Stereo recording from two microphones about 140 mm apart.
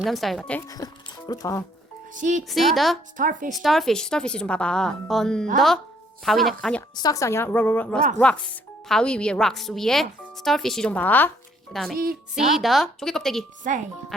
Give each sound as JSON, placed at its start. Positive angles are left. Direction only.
{"t": 0.0, "sound": "speech", "side_deg": 0}
{"t": 0.8, "sound": "speech", "side_deg": 25}
{"t": 2.5, "sound": "speech", "side_deg": 0}
{"t": 3.2, "sound": "speech", "side_deg": -70}
{"t": 3.5, "sound": "speech", "side_deg": 0}
{"t": 6.9, "sound": "a woman's voice", "side_deg": 25}
{"t": 11.7, "sound": "speech", "side_deg": 0}